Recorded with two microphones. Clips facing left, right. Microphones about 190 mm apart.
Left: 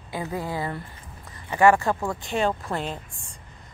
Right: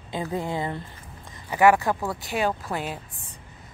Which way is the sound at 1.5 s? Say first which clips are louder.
Even; 10° right (ahead or behind).